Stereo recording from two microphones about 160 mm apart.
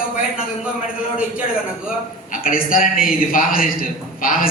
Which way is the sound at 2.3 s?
60° left (ahead or behind).